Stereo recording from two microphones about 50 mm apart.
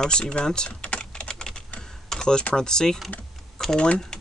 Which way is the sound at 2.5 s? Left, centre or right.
Centre.